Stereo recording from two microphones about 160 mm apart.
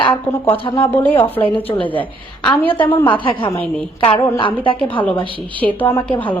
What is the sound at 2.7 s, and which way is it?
Speech, 30° left (ahead or behind).